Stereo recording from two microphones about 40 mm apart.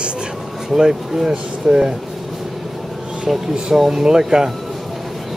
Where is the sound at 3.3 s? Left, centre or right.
Centre.